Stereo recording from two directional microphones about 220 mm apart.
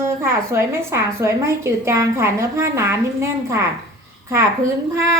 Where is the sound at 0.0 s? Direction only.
10° right (ahead or behind).